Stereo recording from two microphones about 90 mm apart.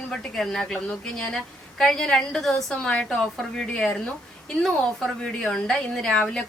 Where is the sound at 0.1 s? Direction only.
5° left (ahead or behind).